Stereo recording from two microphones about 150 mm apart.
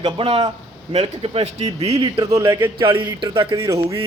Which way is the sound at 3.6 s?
20° right (ahead or behind).